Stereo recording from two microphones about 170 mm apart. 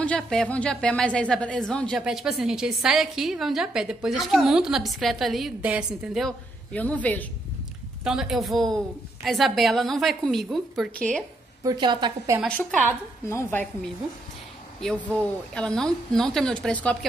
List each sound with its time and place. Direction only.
0.0 s a woman's voice: 5° left (ahead or behind)
8.0 s a woman's voice: 5° right (ahead or behind)
11.6 s a woman's voice: 25° right (ahead or behind)
12.4 s a woman's voice: 5° left (ahead or behind)
13.3 s a woman's voice: 15° left (ahead or behind)
14.8 s a woman's voice: 5° left (ahead or behind)